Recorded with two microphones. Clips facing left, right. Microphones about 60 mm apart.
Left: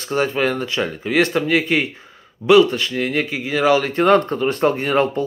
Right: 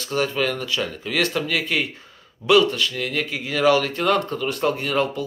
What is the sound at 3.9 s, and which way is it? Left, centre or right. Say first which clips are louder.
Speech: left 6 dB; left.